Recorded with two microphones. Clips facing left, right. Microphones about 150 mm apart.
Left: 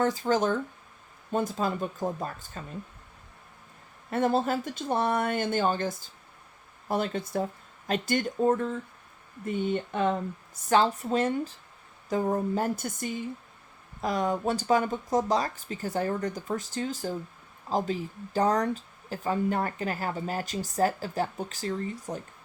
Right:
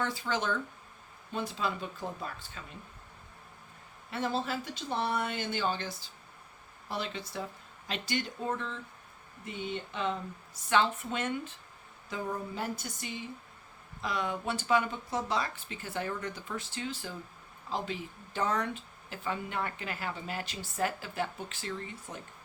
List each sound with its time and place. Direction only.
0.0 s speech: 45° left (ahead or behind)
4.1 s speech: 50° left (ahead or behind)
10.7 s speech: 40° left (ahead or behind)